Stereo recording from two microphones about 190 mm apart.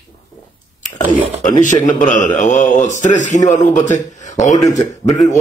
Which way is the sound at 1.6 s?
40° left (ahead or behind).